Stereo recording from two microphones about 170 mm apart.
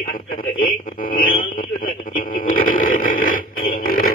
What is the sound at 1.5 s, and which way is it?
Radio, 55° left (ahead or behind).